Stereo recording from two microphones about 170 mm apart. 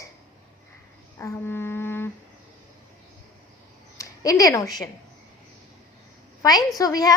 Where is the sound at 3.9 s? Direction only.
20° left (ahead or behind).